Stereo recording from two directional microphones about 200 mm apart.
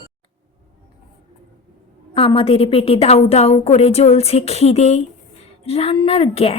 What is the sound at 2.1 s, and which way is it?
Speech, 25° left (ahead or behind).